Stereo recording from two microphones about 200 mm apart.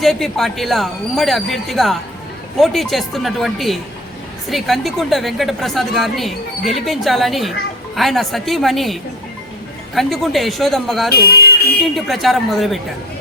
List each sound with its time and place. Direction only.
0.0 s a woman's voice: centre (ahead or behind)
11.2 s a sound: 50° left (ahead or behind)
11.8 s a woman's voice: centre (ahead or behind)